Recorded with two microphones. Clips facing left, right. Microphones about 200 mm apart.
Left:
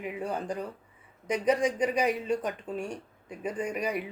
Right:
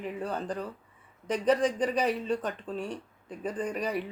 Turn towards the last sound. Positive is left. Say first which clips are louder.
# even
turn(degrees=10)  # may be behind; listen again after turning